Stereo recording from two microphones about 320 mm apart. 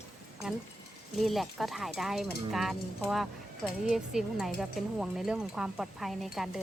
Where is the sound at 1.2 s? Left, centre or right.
Centre.